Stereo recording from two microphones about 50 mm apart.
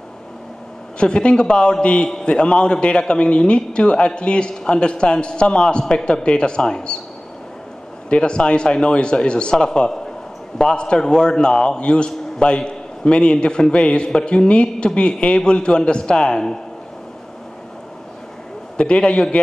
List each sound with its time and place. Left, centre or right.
0.9 s a man's voice: centre
8.1 s a man's voice: centre
18.8 s a man's voice: centre